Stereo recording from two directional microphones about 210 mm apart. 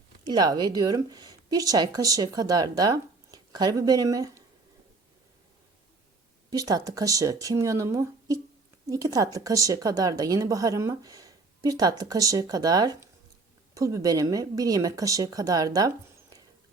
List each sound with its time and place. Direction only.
0.3 s speech: 20° right (ahead or behind)
6.5 s speech: 20° right (ahead or behind)